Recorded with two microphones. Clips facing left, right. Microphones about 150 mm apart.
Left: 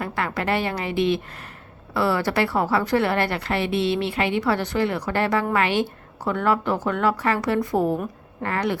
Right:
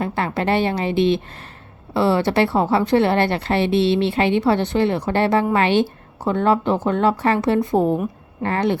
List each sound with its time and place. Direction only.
0.0 s a woman's voice: 25° right (ahead or behind)